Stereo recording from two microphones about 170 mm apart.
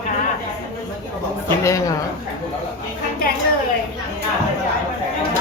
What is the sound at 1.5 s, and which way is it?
Speech, 15° left (ahead or behind).